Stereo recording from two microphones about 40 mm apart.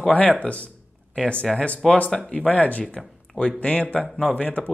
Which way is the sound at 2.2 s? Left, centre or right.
Left.